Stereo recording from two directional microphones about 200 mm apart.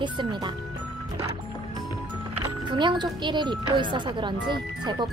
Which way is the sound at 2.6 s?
25° right (ahead or behind).